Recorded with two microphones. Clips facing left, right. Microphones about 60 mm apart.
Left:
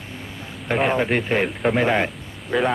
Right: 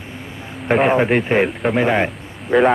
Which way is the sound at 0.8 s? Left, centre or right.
Right.